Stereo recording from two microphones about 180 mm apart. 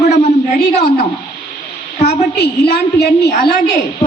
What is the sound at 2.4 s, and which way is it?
A woman's voice, 65° left (ahead or behind).